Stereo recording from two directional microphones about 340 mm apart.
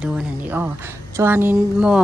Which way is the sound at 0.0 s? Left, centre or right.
Centre.